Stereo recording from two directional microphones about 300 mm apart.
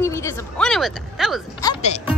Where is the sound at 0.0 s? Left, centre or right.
Centre.